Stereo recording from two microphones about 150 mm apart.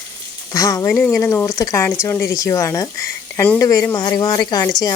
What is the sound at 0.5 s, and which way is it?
Speech, 20° left (ahead or behind).